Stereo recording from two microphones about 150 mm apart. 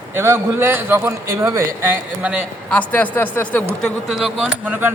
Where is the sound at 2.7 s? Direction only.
10° left (ahead or behind).